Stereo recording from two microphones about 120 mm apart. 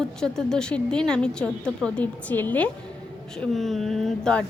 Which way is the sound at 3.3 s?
Centre (ahead or behind).